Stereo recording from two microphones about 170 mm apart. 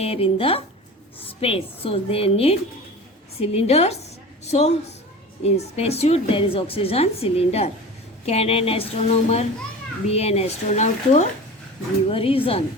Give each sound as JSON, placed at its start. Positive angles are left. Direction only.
{"t": 0.0, "sound": "a woman's voice", "side_deg": 35}